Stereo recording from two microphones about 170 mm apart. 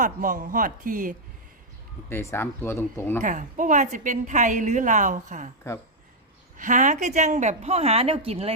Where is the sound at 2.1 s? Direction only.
15° left (ahead or behind).